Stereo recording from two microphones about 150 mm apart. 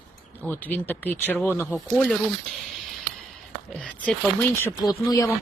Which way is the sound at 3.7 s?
5° left (ahead or behind).